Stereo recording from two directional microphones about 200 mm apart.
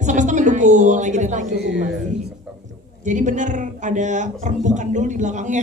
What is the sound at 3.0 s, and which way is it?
Speech, 40° right (ahead or behind).